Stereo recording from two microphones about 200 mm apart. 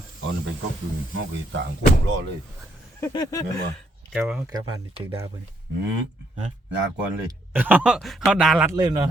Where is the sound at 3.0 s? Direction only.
15° left (ahead or behind).